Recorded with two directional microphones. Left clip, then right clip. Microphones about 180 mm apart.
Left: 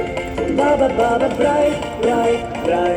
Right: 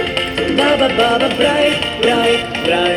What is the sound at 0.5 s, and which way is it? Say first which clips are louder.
Music: right 2 dB; 15° right (ahead or behind).